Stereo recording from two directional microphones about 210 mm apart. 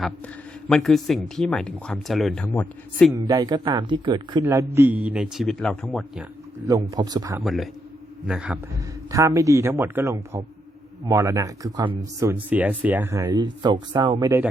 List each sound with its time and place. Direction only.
0.7 s speech: centre (ahead or behind)
3.2 s speech: 15° right (ahead or behind)
4.4 s speech: 10° right (ahead or behind)
6.9 s speech: 20° right (ahead or behind)
7.4 s speech: centre (ahead or behind)
8.7 s speech: 15° right (ahead or behind)